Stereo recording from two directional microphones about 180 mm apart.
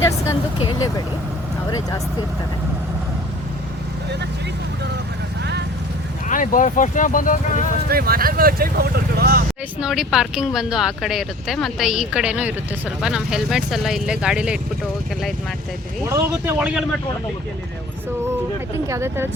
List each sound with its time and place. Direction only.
0.0 s speech: 15° left (ahead or behind)
6.2 s speech: 45° left (ahead or behind)
7.9 s speech: 55° right (ahead or behind)
9.8 s speech: 5° right (ahead or behind)
16.0 s speech: 15° right (ahead or behind)
18.9 s speech: 15° right (ahead or behind)